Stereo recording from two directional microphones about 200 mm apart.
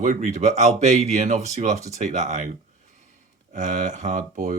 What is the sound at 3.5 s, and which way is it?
Speech, 40° right (ahead or behind).